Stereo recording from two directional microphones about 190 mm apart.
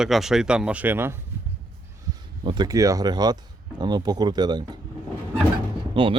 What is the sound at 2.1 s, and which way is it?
Speech, 25° right (ahead or behind).